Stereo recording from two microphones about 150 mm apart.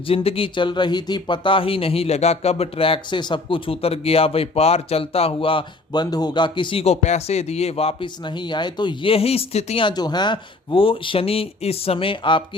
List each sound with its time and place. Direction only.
0.1 s speech: 40° left (ahead or behind)
9.8 s speech: 30° left (ahead or behind)